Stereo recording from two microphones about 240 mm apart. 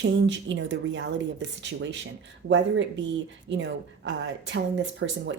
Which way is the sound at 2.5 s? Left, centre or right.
Right.